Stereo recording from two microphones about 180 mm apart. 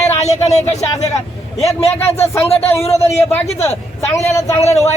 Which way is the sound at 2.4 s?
35° left (ahead or behind).